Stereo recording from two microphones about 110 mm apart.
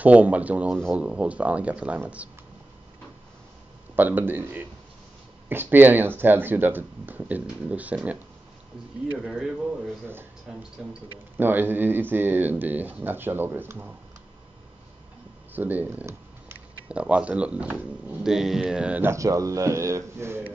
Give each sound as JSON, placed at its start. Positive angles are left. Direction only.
{"t": 0.0, "sound": "speech", "side_deg": -15}
{"t": 3.9, "sound": "speech", "side_deg": -15}
{"t": 9.2, "sound": "speech", "side_deg": -10}
{"t": 10.8, "sound": "speech", "side_deg": -5}
{"t": 11.3, "sound": "speech", "side_deg": -20}
{"t": 15.5, "sound": "speech", "side_deg": -15}
{"t": 19.0, "sound": "speech", "side_deg": -30}